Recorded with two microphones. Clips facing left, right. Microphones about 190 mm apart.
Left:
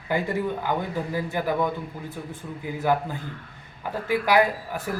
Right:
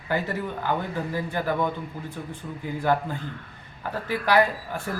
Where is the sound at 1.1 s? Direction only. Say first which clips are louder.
Left 1 dB; 10° left (ahead or behind).